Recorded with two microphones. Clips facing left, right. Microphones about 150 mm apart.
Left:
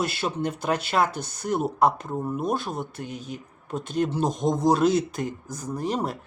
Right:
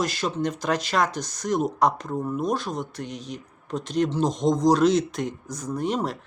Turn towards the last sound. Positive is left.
turn(degrees=0)  # may be behind; listen again after turning